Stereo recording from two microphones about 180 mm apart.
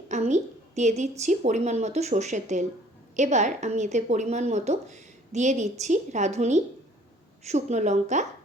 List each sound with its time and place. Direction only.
0.1 s a woman's voice: 40° right (ahead or behind)